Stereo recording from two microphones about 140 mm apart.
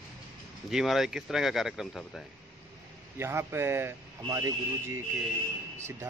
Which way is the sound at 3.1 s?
20° right (ahead or behind).